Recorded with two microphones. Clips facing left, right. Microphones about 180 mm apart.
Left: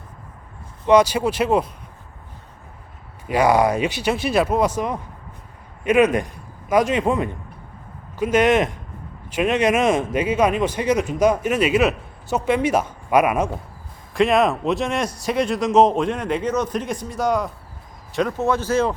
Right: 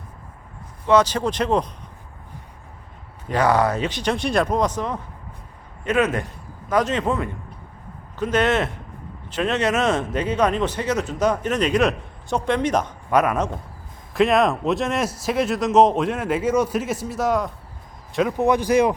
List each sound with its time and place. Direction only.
0.9 s speech: 10° left (ahead or behind)
3.2 s a man's voice: 10° left (ahead or behind)
14.1 s speech: centre (ahead or behind)
18.3 s speech: 15° right (ahead or behind)